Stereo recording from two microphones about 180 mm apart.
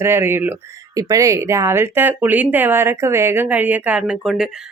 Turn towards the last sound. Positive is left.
turn(degrees=-5)  # may be behind; listen again after turning